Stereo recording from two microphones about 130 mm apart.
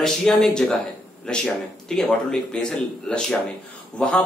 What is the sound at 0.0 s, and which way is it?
A man's voice, 5° left (ahead or behind).